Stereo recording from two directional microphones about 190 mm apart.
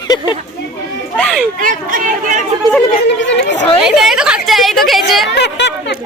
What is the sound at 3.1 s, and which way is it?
Speech, 70° left (ahead or behind).